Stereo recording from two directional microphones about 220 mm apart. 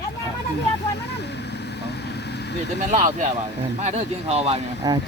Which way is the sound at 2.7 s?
35° right (ahead or behind).